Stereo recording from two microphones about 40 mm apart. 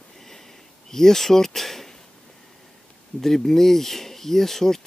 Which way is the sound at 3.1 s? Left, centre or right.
Centre.